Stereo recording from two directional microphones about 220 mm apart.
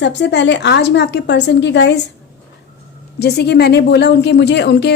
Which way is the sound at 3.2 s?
50° left (ahead or behind).